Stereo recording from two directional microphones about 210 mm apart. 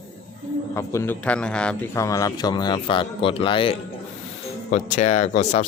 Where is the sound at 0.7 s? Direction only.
15° left (ahead or behind).